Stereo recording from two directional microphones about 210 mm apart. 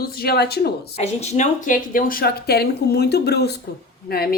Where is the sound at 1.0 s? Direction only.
30° left (ahead or behind); by 4.3 s 45° left (ahead or behind).